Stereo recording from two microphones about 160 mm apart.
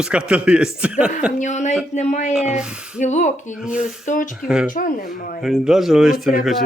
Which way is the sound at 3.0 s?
50° left (ahead or behind).